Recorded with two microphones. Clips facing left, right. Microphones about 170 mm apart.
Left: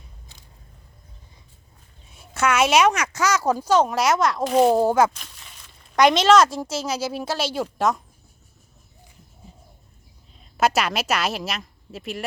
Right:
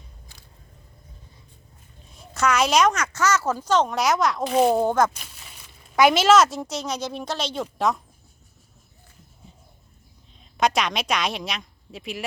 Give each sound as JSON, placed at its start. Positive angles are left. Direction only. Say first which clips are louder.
{"t": 2.1, "sound": "a woman's voice", "louder": "left 1 dB", "side_deg": 5}
{"t": 5.1, "sound": "speech", "louder": "even", "side_deg": -5}
{"t": 10.6, "sound": "a woman's voice", "louder": "left 1 dB", "side_deg": 5}